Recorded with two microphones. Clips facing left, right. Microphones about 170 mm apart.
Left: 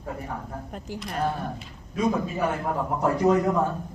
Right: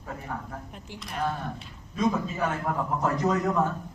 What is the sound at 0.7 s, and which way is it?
Speech, 45° left (ahead or behind).